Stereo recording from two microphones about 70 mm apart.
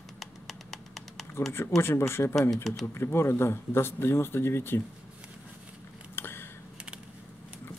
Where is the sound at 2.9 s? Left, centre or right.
Left.